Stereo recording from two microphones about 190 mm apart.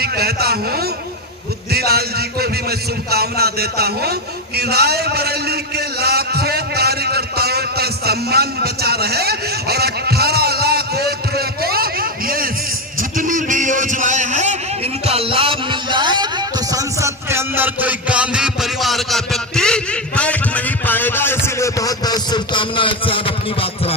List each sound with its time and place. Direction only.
0.0 s a man's voice: 55° right (ahead or behind)
1.7 s a sound: 55° right (ahead or behind); by 14.6 s 40° right (ahead or behind)
15.0 s music: 30° right (ahead or behind); by 23.9 s 30° left (ahead or behind)